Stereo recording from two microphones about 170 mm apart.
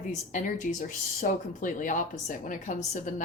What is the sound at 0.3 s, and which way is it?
Speech, 50° left (ahead or behind).